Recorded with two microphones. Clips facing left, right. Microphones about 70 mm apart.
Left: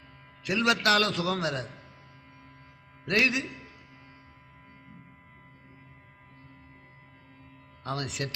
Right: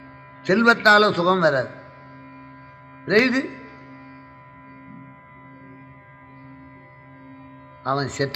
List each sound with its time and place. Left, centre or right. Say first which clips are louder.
0.4 s a man's voice: right 10 dB; right
3.0 s a man's voice: right 9 dB; right
7.9 s a man's voice: right 10 dB; right